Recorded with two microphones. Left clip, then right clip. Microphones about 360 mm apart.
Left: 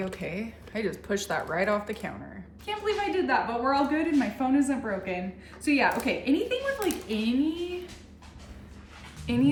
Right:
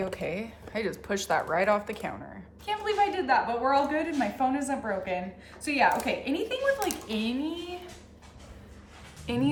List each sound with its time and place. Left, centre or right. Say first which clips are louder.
0.0 s a woman's voice: right 2 dB; centre
9.2 s speech: left 3 dB; centre